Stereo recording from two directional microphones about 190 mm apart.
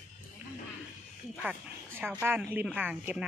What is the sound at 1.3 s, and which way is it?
Speech, 10° right (ahead or behind).